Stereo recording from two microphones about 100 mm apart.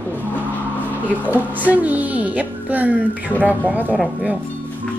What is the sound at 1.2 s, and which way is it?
A woman's voice, 15° right (ahead or behind).